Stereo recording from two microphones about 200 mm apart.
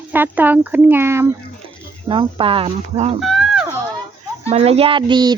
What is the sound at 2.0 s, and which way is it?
A child's voice, 25° right (ahead or behind).